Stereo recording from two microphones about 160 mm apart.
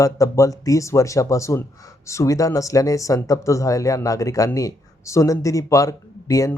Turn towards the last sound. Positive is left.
turn(degrees=20)  # may be behind; listen again after turning